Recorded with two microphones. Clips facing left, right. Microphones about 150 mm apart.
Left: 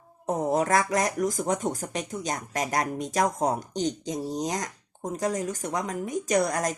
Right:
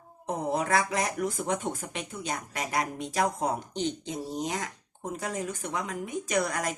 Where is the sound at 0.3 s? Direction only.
45° left (ahead or behind).